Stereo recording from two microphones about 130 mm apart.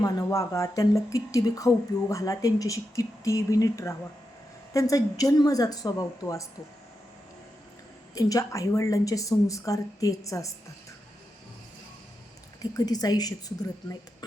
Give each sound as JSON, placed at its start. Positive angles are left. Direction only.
{"t": 0.0, "sound": "speech", "side_deg": 25}
{"t": 8.1, "sound": "speech", "side_deg": 25}
{"t": 12.7, "sound": "speech", "side_deg": 30}